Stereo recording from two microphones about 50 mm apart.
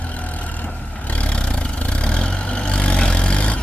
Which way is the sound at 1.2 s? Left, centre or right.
Left.